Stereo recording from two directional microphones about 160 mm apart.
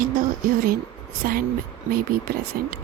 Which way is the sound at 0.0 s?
65° right (ahead or behind).